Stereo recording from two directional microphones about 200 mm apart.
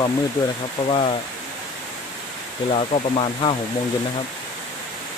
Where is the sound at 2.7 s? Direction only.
30° left (ahead or behind).